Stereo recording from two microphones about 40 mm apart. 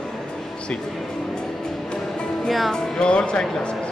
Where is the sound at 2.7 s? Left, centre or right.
Left.